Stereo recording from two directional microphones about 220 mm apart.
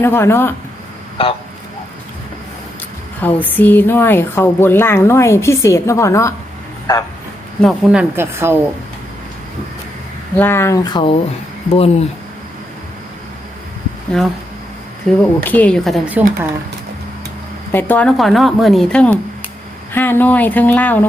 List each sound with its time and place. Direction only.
0.0 s speech: 10° left (ahead or behind)
1.2 s speech: 25° left (ahead or behind)
3.2 s speech: 10° left (ahead or behind)
7.6 s a woman's voice: centre (ahead or behind)
10.3 s speech: 10° left (ahead or behind); by 12.0 s 30° left (ahead or behind)
14.1 s a woman's voice: centre (ahead or behind)
17.7 s a woman's voice: 10° left (ahead or behind)